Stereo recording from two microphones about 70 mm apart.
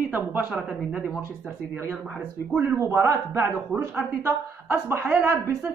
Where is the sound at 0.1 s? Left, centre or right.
Right.